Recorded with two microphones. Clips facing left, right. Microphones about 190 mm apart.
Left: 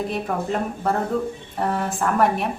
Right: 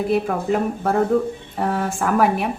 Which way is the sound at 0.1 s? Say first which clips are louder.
Right 5 dB; 5° right (ahead or behind).